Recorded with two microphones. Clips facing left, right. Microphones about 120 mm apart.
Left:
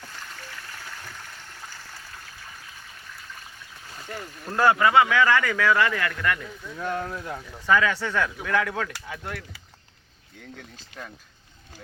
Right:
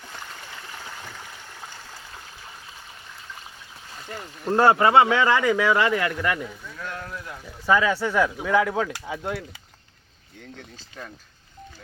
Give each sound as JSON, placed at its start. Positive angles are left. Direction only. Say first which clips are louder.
{"t": 1.0, "sound": "a sound", "louder": "right 2 dB", "side_deg": -15}
{"t": 4.1, "sound": "speech", "louder": "right 6 dB", "side_deg": -15}
{"t": 4.5, "sound": "speech", "louder": "right 2 dB", "side_deg": -30}
{"t": 6.7, "sound": "speech", "louder": "left 7 dB", "side_deg": 30}
{"t": 7.7, "sound": "speech", "louder": "right 2 dB", "side_deg": -15}